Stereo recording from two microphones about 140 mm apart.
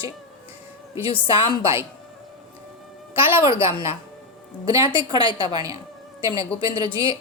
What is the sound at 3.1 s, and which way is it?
A woman's voice, 40° left (ahead or behind).